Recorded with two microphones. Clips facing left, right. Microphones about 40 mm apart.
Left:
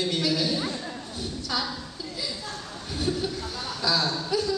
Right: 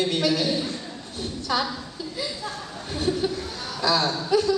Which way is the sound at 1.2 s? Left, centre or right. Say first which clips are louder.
Right 5 dB; right.